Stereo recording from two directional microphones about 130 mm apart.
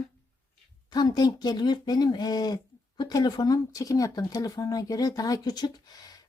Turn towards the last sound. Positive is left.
turn(degrees=30)  # may be behind; listen again after turning